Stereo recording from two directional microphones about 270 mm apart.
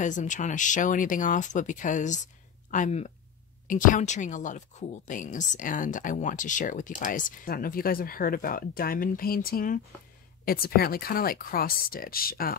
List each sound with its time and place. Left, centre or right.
0.0 s speech: left